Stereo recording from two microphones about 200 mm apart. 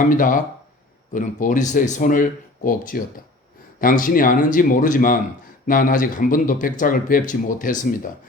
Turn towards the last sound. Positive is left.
turn(degrees=45)  # may be behind; listen again after turning